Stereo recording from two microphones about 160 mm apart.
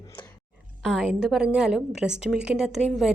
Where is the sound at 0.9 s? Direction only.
Centre (ahead or behind).